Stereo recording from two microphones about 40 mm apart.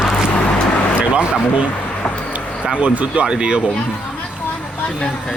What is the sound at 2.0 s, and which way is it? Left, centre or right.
Vehicle, left.